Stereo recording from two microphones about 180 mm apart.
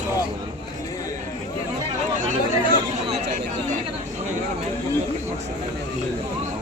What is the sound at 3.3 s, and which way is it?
Speech, 45° right (ahead or behind).